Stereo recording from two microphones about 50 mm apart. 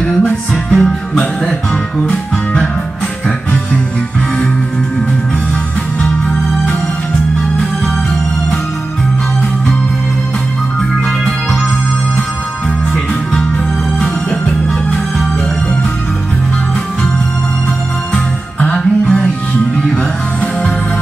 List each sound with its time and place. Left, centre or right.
0.0 s music: left
13.9 s music: centre
18.6 s music: left